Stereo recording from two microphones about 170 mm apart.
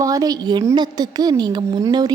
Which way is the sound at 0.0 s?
20° right (ahead or behind).